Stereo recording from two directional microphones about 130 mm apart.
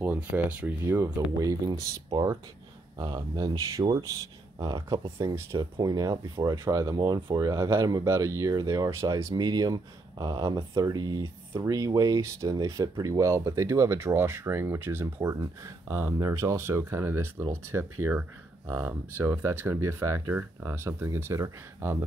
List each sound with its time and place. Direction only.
0.0 s speech: 15° right (ahead or behind)